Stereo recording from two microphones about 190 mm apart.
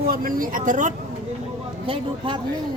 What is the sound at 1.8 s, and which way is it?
Speech, 30° right (ahead or behind).